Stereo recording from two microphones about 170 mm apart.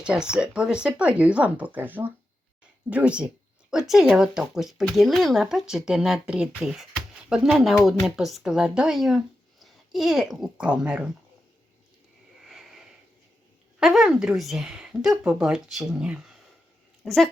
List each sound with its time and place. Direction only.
0.0 s speech: 5° right (ahead or behind)
12.4 s a sound: centre (ahead or behind)
13.7 s speech: centre (ahead or behind)